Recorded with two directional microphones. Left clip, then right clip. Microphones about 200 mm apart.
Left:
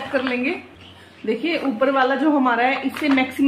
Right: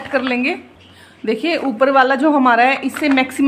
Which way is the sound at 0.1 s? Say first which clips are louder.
Right 5 dB; 60° right (ahead or behind).